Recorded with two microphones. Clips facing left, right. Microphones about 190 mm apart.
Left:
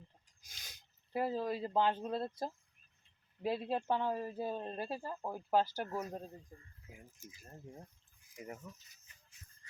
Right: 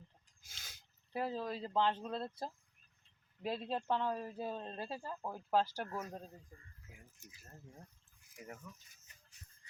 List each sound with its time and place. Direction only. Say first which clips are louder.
0.4 s a sound: even; 15° left (ahead or behind)
1.1 s speech: left 3 dB; 5° left (ahead or behind)
3.4 s speech: left 3 dB; 10° left (ahead or behind)
5.9 s speech: left 3 dB; 20° left (ahead or behind)
8.7 s speech: left 2 dB; 35° left (ahead or behind)